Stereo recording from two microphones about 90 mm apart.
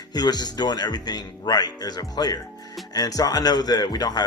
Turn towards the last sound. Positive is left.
turn(degrees=45)  # may be behind; listen again after turning